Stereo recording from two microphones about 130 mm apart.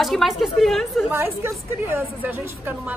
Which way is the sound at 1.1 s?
15° right (ahead or behind).